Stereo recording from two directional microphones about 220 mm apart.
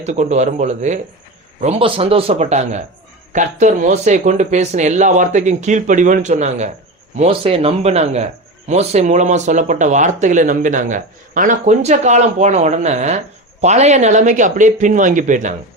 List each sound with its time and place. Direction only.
0.0 s a man's voice: 30° right (ahead or behind)